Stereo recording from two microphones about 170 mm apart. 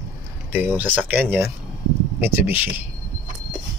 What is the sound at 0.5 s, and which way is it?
A man's voice, 10° right (ahead or behind).